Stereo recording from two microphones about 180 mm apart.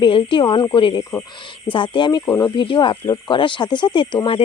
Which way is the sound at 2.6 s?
30° left (ahead or behind).